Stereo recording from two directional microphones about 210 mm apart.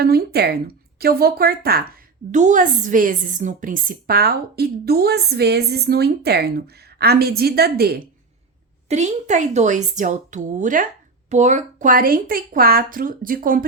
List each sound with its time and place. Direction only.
0.0 s a woman's voice: 50° right (ahead or behind)
2.3 s a woman's voice: 35° right (ahead or behind)
8.9 s a woman's voice: 35° right (ahead or behind)